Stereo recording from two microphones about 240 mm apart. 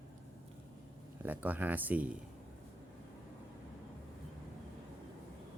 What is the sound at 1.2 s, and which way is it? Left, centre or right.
Speech, centre.